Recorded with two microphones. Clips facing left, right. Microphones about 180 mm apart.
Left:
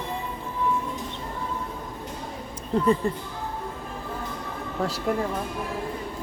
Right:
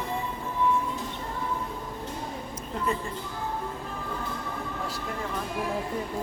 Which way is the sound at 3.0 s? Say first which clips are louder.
Left 9 dB; 40° left (ahead or behind).